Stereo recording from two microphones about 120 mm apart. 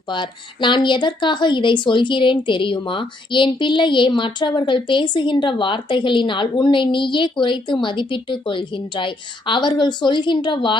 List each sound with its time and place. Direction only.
0.1 s a woman's voice: 40° left (ahead or behind)